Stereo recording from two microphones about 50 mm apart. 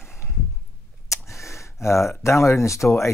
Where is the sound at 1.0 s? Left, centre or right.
Left.